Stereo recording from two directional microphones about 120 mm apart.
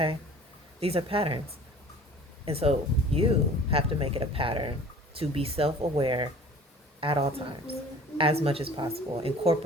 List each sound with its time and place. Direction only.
0.8 s speech: 55° right (ahead or behind)
2.4 s speech: 55° right (ahead or behind)